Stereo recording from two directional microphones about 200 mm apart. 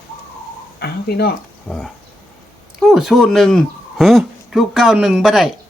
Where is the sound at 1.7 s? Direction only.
5° left (ahead or behind).